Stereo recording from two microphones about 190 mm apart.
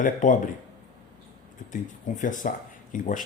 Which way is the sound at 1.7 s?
45° left (ahead or behind).